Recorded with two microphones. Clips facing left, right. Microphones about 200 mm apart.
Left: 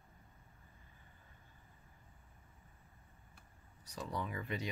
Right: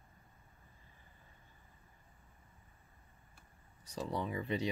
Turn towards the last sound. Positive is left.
turn(degrees=-30)  # may be behind; listen again after turning